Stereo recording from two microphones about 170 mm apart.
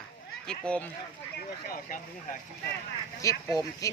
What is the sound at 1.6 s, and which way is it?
Speech, 60° left (ahead or behind).